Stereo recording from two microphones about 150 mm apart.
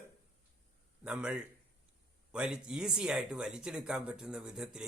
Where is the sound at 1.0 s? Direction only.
5° right (ahead or behind).